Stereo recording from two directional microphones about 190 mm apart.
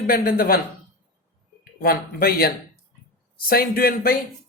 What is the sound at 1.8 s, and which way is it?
A man's voice, 50° left (ahead or behind).